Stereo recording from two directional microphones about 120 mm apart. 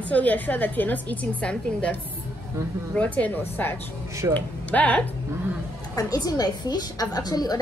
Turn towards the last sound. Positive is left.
turn(degrees=35)  # may be behind; listen again after turning